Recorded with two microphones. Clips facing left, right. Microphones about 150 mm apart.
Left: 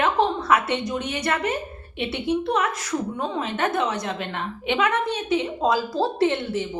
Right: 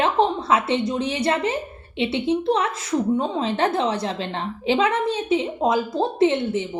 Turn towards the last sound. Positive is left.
turn(degrees=-25)  # may be behind; listen again after turning